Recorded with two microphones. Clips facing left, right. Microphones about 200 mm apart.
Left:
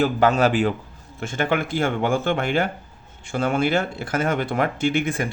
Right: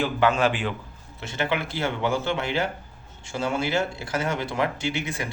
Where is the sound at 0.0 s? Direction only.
40° left (ahead or behind).